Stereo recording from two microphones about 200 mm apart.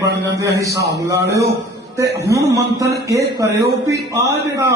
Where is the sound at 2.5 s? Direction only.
15° right (ahead or behind).